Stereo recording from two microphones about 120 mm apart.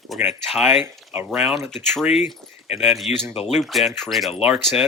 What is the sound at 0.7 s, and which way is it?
Speech, 20° right (ahead or behind).